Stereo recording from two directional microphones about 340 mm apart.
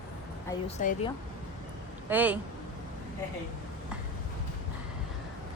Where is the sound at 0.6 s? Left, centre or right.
Centre.